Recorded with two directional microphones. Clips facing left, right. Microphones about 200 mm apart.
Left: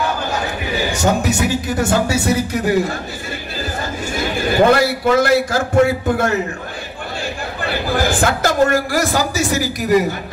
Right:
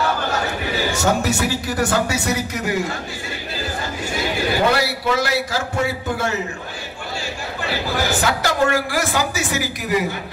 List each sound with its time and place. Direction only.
0.3 s a man's voice: 15° left (ahead or behind); by 2.7 s 30° left (ahead or behind)
4.2 s a man's voice: 50° left (ahead or behind)
7.6 s a man's voice: 55° left (ahead or behind)